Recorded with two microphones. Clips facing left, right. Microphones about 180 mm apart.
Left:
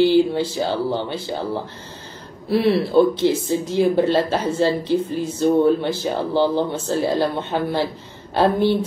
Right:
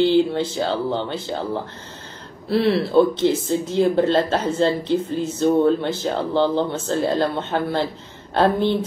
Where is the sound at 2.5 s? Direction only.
10° left (ahead or behind).